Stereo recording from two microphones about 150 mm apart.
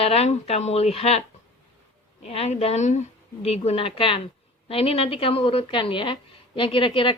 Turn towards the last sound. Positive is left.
turn(degrees=35)  # may be behind; listen again after turning